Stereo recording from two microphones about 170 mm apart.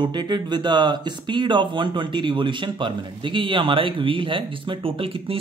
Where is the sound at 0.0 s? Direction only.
25° right (ahead or behind).